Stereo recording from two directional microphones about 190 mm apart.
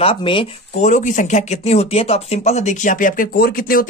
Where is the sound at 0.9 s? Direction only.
40° left (ahead or behind).